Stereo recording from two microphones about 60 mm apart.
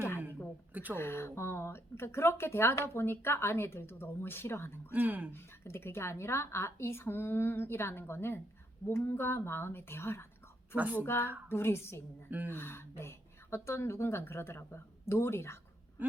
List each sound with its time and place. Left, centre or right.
0.7 s a sound: right
0.9 s a woman's voice: left
4.9 s speech: right
5.3 s a woman's voice: left
10.8 s speech: right
11.0 s a woman's voice: left